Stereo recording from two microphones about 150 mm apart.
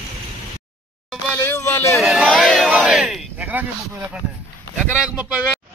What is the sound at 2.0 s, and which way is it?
Crowd, centre (ahead or behind).